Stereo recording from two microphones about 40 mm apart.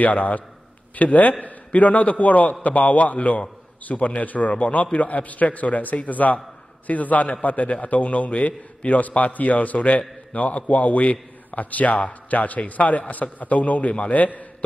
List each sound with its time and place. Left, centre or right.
0.0 s a man's voice: left